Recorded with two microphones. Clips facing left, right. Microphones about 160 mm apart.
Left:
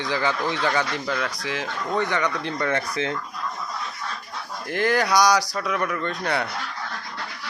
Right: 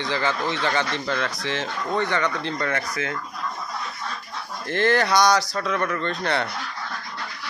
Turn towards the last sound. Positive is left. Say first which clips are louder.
# right 1 dB
turn(degrees=10)  # may be behind; listen again after turning